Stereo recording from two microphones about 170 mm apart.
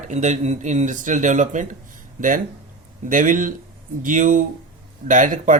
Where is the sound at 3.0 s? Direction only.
50° right (ahead or behind).